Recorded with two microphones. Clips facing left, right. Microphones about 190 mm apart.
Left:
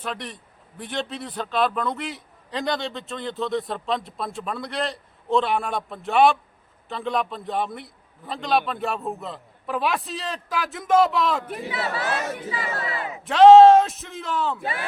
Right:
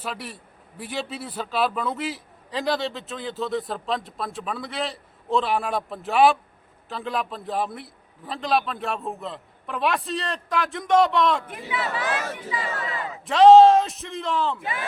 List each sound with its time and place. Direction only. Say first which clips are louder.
0.0 s a man's voice: left 1 dB; 5° right (ahead or behind)
11.4 s a man's voice: left 1 dB; 40° left (ahead or behind)
12.9 s a sound: left 1 dB; 15° left (ahead or behind)
13.2 s a man's voice: left 2 dB; centre (ahead or behind)